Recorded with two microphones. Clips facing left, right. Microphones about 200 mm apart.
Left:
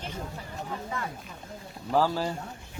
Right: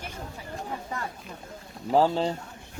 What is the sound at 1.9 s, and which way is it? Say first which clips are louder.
Speech: right 3 dB; 25° right (ahead or behind).